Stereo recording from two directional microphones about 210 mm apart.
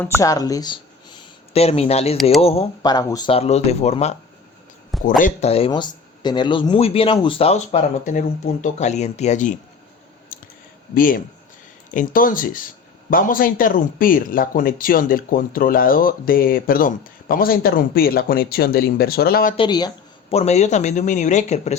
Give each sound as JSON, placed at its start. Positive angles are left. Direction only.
{"t": 0.0, "sound": "speech", "side_deg": 15}
{"t": 10.3, "sound": "clicking", "side_deg": 40}
{"t": 10.9, "sound": "speech", "side_deg": 40}
{"t": 19.5, "sound": "speech", "side_deg": 20}
{"t": 20.3, "sound": "speech", "side_deg": 30}